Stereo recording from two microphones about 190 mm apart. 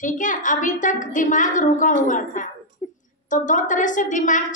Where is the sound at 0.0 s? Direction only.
40° left (ahead or behind).